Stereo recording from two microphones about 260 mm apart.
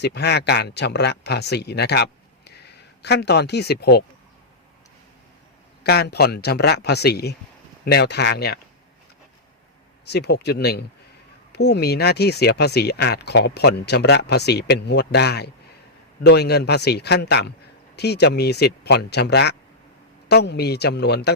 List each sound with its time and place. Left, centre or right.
0.0 s speech: left
5.8 s speech: left
10.1 s speech: left